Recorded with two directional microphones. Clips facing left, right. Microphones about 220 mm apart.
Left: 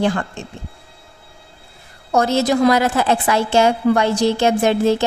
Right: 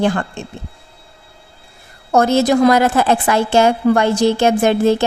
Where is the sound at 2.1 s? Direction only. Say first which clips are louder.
Right 3 dB; 50° right (ahead or behind).